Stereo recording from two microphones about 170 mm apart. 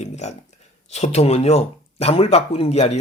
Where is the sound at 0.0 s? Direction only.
40° left (ahead or behind).